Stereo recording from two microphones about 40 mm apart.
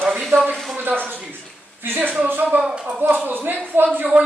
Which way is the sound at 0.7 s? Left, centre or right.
Right.